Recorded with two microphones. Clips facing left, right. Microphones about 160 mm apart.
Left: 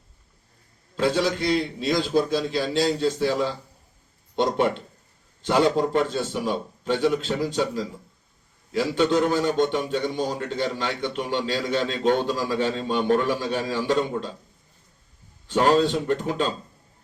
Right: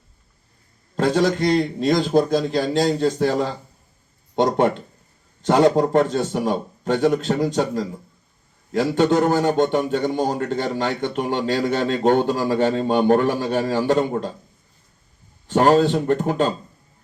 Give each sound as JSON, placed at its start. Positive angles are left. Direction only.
{"t": 0.9, "sound": "a man's voice", "side_deg": -50}
{"t": 15.4, "sound": "a man's voice", "side_deg": -45}